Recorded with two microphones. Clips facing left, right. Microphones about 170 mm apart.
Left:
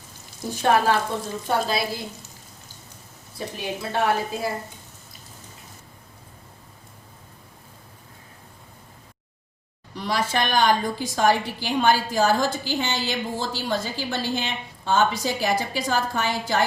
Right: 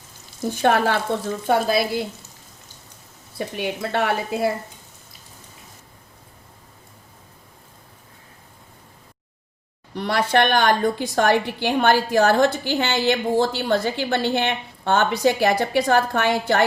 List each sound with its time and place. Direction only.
1.1 s a woman's voice: 65° right (ahead or behind)
3.3 s speech: 65° right (ahead or behind)
9.9 s a woman's voice: 60° right (ahead or behind)